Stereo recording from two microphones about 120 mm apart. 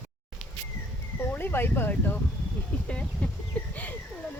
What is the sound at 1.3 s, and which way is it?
Speech, 20° left (ahead or behind).